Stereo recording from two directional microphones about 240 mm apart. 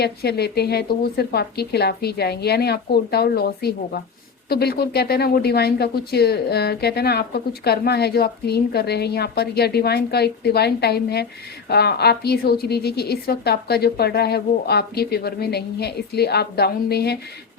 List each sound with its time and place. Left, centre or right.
0.0 s speech: left